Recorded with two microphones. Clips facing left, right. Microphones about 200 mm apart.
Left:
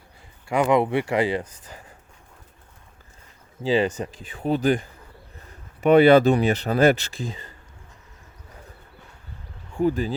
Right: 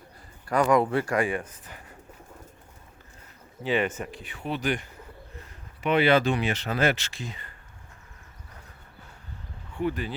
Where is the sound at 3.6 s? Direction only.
30° left (ahead or behind).